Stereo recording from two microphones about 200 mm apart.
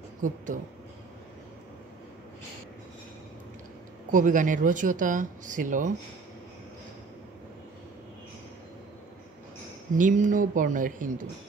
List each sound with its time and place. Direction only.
4.1 s speech: 40° right (ahead or behind)
9.9 s speech: 40° right (ahead or behind)